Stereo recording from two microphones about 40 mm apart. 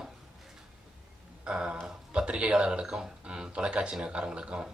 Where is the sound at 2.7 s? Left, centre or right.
Centre.